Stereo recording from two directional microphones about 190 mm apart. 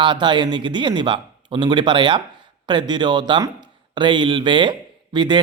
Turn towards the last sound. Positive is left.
turn(degrees=-25)  # may be behind; listen again after turning